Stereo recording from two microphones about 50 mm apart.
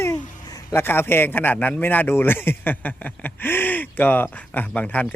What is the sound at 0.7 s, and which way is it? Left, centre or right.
Speech, left.